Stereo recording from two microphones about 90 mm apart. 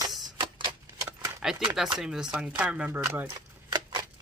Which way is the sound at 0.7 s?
70° right (ahead or behind).